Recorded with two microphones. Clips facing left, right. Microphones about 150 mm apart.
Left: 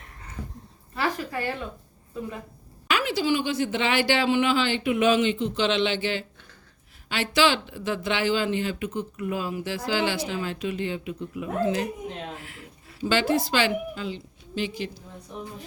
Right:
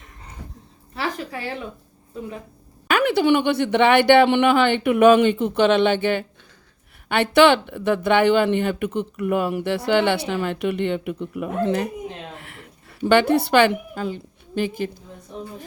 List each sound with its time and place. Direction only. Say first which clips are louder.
2.8 s speech: right 7 dB; 55° right (ahead or behind)